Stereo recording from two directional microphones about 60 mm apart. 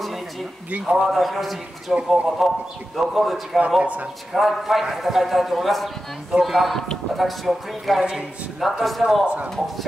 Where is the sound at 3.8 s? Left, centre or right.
Right.